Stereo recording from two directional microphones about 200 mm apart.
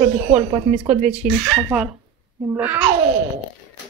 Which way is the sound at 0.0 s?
35° right (ahead or behind).